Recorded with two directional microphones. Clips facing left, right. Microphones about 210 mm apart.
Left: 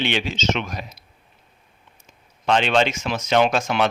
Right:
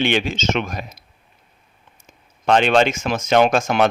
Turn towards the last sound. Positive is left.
turn(degrees=-50)  # may be behind; listen again after turning